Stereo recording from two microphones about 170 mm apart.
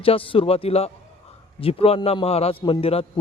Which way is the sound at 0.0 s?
30° left (ahead or behind).